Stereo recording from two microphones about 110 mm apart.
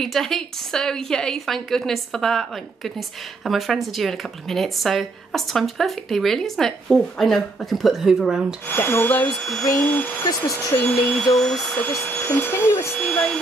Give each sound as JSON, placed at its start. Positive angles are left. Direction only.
{"t": 0.0, "sound": "speech", "side_deg": 0}
{"t": 8.6, "sound": "speech", "side_deg": 20}
{"t": 9.4, "sound": "speech", "side_deg": 5}
{"t": 10.2, "sound": "speech", "side_deg": 35}
{"t": 11.1, "sound": "speech", "side_deg": 5}
{"t": 13.0, "sound": "speech", "side_deg": 10}